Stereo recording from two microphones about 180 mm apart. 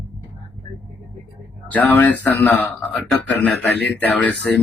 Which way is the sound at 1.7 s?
10° left (ahead or behind).